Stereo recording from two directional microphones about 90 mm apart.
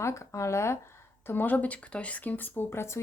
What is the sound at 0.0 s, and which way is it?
Speech, 35° left (ahead or behind).